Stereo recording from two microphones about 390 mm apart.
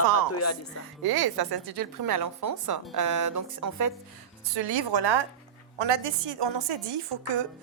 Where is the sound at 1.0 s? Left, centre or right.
Right.